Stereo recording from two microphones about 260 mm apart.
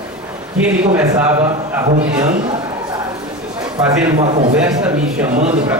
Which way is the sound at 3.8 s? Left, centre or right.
Centre.